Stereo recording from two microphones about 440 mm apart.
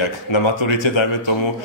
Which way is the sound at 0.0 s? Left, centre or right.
Left.